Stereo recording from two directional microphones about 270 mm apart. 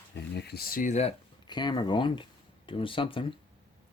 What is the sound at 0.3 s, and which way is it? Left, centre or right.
Speech, left.